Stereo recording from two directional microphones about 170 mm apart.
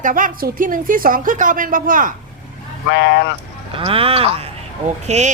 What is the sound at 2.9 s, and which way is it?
Speech, 90° left.